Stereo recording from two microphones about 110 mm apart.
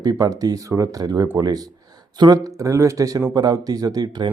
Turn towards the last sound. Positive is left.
turn(degrees=-40)  # may be behind; listen again after turning